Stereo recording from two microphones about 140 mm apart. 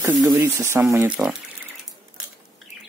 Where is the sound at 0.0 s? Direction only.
25° right (ahead or behind).